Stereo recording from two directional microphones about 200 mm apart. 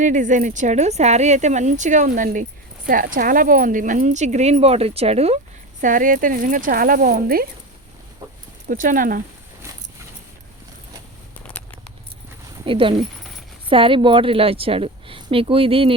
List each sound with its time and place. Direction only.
0.0 s speech: 40° right (ahead or behind)
5.8 s speech: 40° right (ahead or behind)
8.6 s speech: 40° right (ahead or behind)
11.4 s a sound: 5° left (ahead or behind)
12.6 s a woman's voice: 25° right (ahead or behind)